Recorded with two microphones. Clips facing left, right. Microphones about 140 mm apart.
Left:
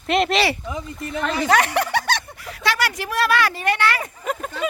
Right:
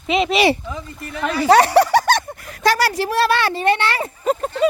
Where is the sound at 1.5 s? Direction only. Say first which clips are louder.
Right 9 dB; 35° right (ahead or behind).